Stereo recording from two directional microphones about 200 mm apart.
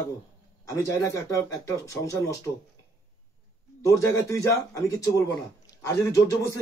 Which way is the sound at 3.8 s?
15° left (ahead or behind).